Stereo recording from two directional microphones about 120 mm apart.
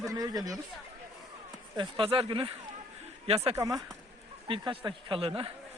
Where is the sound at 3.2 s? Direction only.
55° right (ahead or behind).